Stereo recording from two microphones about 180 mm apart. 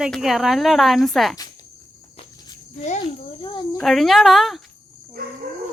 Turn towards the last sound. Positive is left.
turn(degrees=0)  # may be behind; listen again after turning